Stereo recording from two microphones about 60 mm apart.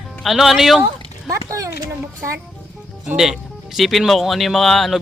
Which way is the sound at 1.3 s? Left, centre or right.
Right.